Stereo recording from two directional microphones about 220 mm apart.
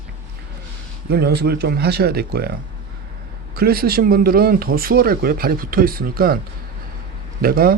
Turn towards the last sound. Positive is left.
turn(degrees=-40)  # may be behind; listen again after turning